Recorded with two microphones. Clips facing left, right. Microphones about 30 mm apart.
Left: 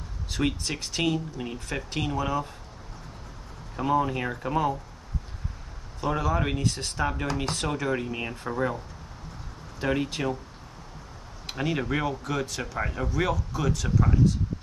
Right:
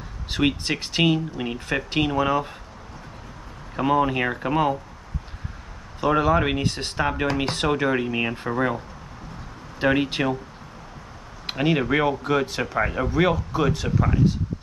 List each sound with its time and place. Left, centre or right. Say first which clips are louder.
0.3 s speech: right 6 dB; right
3.7 s speech: right 4 dB; right
5.9 s speech: right 7 dB; right
11.4 s speech: right 6 dB; right